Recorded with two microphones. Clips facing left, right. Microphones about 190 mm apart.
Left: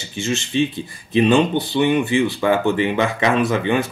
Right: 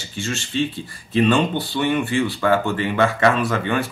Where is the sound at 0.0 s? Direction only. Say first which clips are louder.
Left 4 dB; 20° left (ahead or behind).